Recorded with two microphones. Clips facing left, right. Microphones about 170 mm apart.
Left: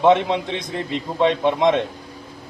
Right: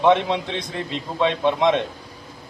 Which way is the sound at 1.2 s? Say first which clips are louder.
Left 2 dB; 15° left (ahead or behind).